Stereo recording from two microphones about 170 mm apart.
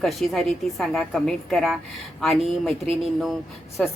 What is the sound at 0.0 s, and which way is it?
A woman's voice, centre (ahead or behind).